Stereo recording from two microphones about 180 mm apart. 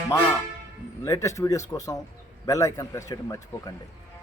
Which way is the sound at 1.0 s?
15° left (ahead or behind).